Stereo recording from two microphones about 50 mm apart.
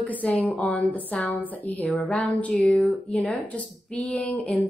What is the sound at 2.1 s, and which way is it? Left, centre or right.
Speech, centre.